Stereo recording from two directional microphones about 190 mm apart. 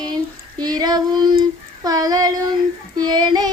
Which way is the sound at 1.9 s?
20° right (ahead or behind).